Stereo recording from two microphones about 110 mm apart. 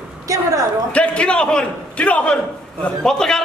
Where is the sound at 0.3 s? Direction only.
30° right (ahead or behind).